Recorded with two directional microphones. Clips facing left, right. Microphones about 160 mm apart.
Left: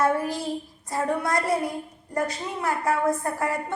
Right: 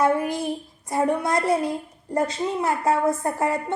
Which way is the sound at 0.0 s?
20° right (ahead or behind).